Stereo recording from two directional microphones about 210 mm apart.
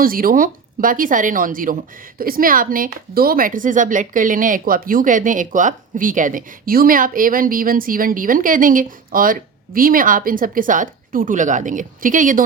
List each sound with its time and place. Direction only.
0.0 s speech: 45° right (ahead or behind)